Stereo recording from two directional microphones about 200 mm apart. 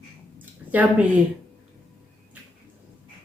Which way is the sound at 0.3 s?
10° right (ahead or behind).